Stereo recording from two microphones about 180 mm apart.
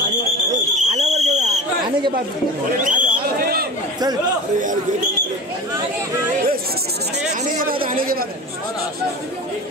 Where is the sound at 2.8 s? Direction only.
50° right (ahead or behind).